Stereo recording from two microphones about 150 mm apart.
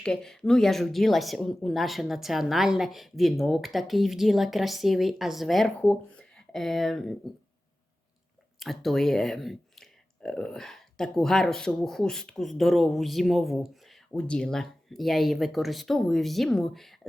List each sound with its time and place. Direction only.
0.0 s speech: 5° left (ahead or behind)
8.5 s speech: centre (ahead or behind)